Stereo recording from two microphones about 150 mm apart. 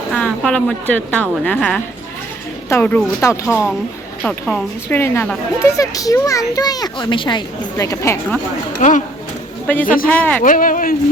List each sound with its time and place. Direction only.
0.1 s a woman's voice: 5° left (ahead or behind)
3.5 s a woman's voice: 5° right (ahead or behind)
4.9 s a woman's voice: 15° left (ahead or behind)
8.8 s speech: 55° left (ahead or behind)
9.8 s speech: 65° left (ahead or behind)
10.1 s a woman's voice: 10° left (ahead or behind)
10.4 s speech: 65° left (ahead or behind)